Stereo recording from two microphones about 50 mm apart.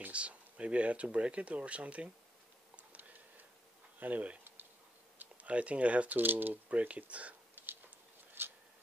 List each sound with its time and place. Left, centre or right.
0.1 s speech: right
3.0 s a sound: right
4.0 s speech: right
8.4 s tick-tock: right